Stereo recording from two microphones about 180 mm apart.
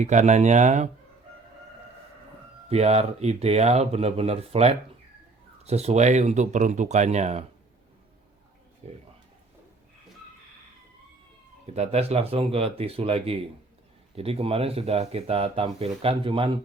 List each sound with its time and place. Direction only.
0.0 s speech: 40° right (ahead or behind)
2.6 s speech: 35° right (ahead or behind)
8.8 s speech: 35° right (ahead or behind)
11.6 s speech: 35° right (ahead or behind)